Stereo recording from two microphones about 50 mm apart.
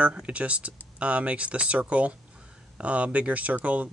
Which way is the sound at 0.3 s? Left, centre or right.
Right.